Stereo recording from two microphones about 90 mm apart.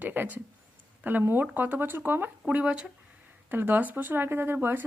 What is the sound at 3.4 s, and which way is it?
Speech, 25° right (ahead or behind).